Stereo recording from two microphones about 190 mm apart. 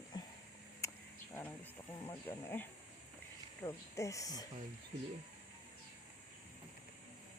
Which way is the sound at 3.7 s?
15° left (ahead or behind).